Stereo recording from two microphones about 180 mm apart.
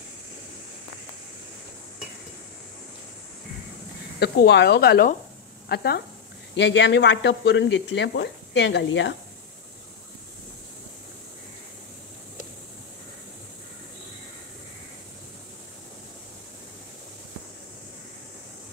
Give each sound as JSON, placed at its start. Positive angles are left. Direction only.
{"t": 4.2, "sound": "speech", "side_deg": 70}
{"t": 6.5, "sound": "speech", "side_deg": 80}